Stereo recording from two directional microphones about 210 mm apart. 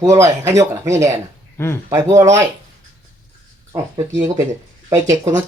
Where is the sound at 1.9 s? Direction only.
15° right (ahead or behind).